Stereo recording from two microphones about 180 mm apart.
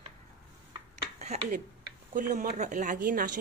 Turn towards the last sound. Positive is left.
turn(degrees=-50)  # may be behind; listen again after turning